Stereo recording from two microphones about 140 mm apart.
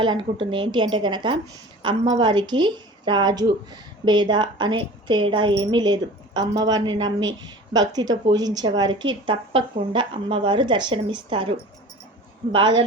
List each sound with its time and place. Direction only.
0.0 s a woman's voice: 35° right (ahead or behind)